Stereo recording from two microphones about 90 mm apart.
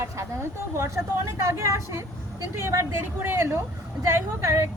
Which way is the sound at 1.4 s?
30° right (ahead or behind).